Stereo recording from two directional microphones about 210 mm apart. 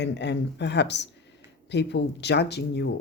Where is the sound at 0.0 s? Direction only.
55° left (ahead or behind).